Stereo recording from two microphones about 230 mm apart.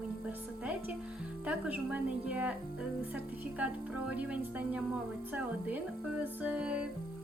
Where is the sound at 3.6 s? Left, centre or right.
Centre.